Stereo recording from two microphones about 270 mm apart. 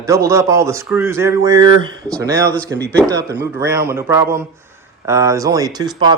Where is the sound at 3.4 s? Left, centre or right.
Centre.